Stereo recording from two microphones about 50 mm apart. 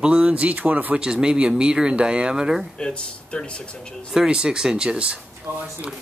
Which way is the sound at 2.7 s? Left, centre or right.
Centre.